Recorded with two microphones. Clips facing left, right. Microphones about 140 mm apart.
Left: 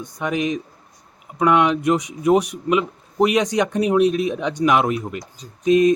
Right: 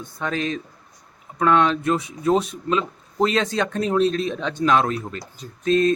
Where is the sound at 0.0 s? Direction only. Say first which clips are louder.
Left 3 dB; 15° left (ahead or behind).